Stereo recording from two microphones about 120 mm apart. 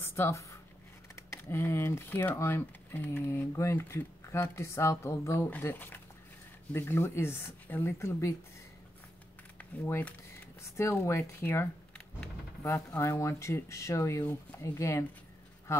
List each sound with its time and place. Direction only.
0.0 s speech: 20° left (ahead or behind)
9.6 s speech: 15° left (ahead or behind)
12.6 s speech: 25° left (ahead or behind)